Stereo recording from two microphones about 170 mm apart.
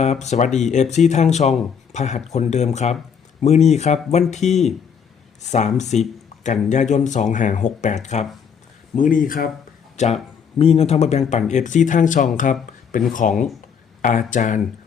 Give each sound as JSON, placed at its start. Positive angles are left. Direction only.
{"t": 0.0, "sound": "speech", "side_deg": 40}
{"t": 10.0, "sound": "speech", "side_deg": 45}